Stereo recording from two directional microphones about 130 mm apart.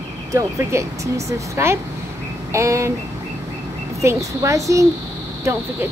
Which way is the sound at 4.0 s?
25° right (ahead or behind).